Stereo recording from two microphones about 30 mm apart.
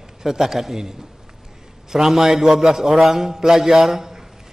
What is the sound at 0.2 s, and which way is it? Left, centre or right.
Speech, centre.